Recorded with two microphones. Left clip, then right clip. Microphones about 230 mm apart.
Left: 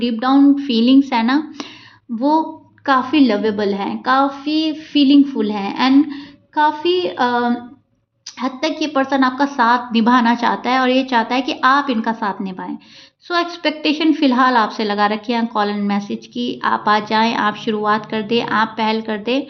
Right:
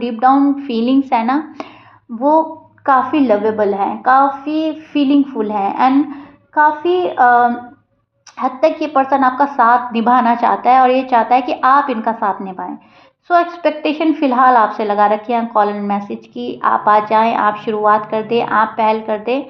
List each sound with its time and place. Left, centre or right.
0.0 s a woman's voice: left
2.8 s a woman's voice: left